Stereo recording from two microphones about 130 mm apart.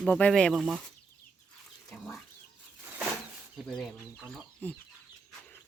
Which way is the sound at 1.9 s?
5° left (ahead or behind).